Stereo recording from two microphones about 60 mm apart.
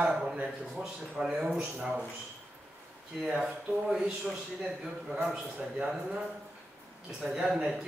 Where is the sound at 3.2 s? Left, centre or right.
Centre.